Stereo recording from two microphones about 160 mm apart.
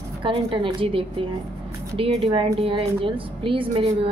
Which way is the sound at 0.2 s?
30° right (ahead or behind).